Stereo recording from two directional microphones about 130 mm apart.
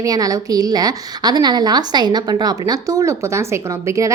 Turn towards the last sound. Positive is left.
turn(degrees=-25)  # may be behind; listen again after turning